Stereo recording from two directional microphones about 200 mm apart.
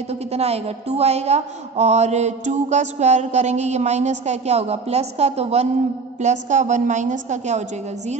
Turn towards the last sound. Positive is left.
turn(degrees=-35)  # may be behind; listen again after turning